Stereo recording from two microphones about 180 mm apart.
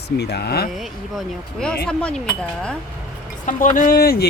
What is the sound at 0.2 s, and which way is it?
Speech, 65° left (ahead or behind).